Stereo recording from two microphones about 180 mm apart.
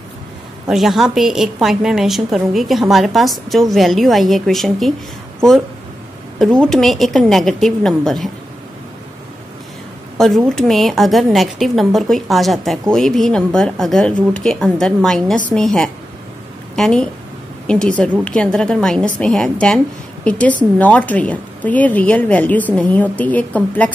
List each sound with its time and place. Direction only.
0.7 s a woman's voice: centre (ahead or behind)
6.4 s a woman's voice: 5° left (ahead or behind)
10.1 s a woman's voice: centre (ahead or behind)